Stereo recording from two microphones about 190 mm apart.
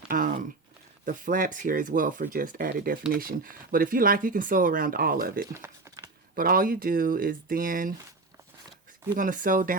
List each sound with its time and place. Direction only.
0.1 s speech: 45° right (ahead or behind)
9.1 s speech: 45° right (ahead or behind)